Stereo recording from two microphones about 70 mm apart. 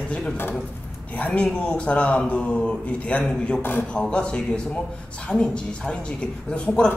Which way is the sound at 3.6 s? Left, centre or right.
Left.